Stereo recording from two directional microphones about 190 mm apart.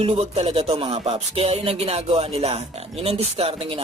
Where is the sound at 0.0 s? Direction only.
30° right (ahead or behind).